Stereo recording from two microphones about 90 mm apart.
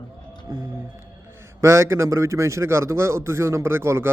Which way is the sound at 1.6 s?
30° right (ahead or behind).